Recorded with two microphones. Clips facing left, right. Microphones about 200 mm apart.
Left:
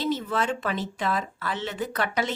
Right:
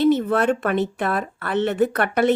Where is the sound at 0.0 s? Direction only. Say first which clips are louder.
Right 9 dB; 60° right (ahead or behind).